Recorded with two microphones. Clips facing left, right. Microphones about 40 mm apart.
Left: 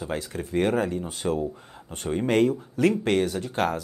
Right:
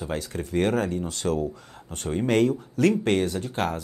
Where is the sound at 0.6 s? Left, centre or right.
Left.